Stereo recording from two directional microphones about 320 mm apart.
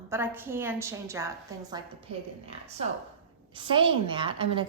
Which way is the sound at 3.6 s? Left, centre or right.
Centre.